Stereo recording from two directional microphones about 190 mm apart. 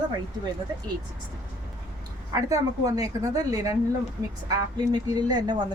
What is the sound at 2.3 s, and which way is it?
A woman's voice, 20° right (ahead or behind).